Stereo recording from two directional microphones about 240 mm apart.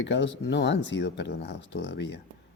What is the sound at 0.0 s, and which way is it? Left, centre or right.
Speech, left.